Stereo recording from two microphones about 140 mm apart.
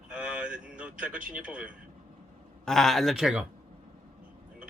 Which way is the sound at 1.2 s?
10° right (ahead or behind).